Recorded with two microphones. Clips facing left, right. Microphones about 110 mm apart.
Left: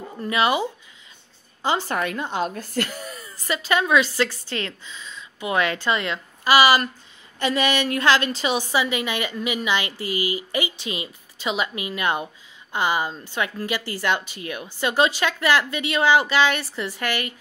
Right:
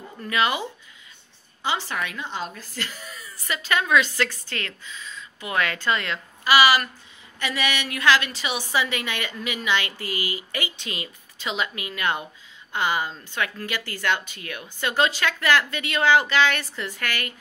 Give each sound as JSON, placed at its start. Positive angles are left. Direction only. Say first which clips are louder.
{"t": 0.2, "sound": "a woman's voice", "louder": "left 3 dB", "side_deg": 20}
{"t": 1.6, "sound": "speech", "louder": "left 4 dB", "side_deg": 40}
{"t": 3.4, "sound": "a woman's voice", "louder": "left 3 dB", "side_deg": 20}
{"t": 6.4, "sound": "a woman's voice", "louder": "left 2 dB", "side_deg": 35}
{"t": 8.7, "sound": "a woman's voice", "louder": "left 3 dB", "side_deg": 20}